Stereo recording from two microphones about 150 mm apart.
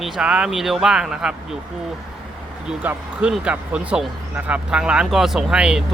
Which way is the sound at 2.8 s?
10° right (ahead or behind).